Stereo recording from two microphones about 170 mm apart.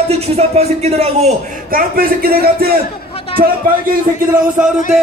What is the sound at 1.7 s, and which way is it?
Speech, 60° right (ahead or behind).